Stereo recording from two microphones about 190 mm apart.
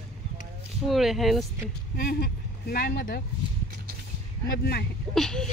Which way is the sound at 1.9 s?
55° left (ahead or behind).